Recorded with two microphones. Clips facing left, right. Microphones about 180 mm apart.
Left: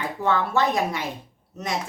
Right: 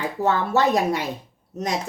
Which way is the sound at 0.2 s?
40° right (ahead or behind).